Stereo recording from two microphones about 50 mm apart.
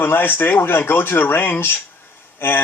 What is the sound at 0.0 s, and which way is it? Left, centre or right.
Speech, left.